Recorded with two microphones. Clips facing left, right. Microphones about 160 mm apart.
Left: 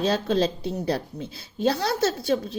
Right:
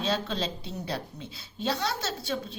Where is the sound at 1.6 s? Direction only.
50° left (ahead or behind).